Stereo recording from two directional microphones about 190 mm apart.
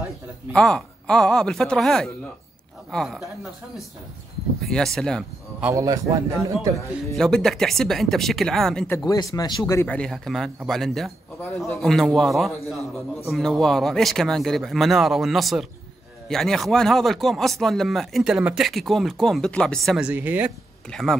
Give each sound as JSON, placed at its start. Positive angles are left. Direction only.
{"t": 0.5, "sound": "speech", "side_deg": 5}
{"t": 4.6, "sound": "speech", "side_deg": 0}
{"t": 5.6, "sound": "a man's voice", "side_deg": -15}
{"t": 7.2, "sound": "speech", "side_deg": 5}
{"t": 8.9, "sound": "speech", "side_deg": 20}
{"t": 20.9, "sound": "speech", "side_deg": 0}